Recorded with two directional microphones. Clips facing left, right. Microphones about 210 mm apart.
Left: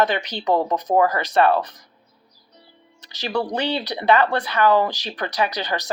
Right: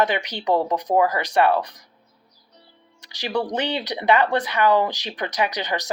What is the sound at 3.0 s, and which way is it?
Speech, 15° right (ahead or behind).